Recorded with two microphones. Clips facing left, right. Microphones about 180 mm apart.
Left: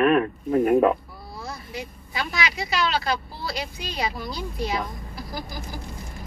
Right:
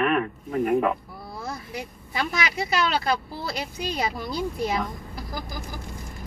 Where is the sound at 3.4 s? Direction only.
50° right (ahead or behind).